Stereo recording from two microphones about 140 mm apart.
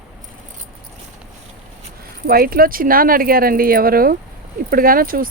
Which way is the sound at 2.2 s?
90° right.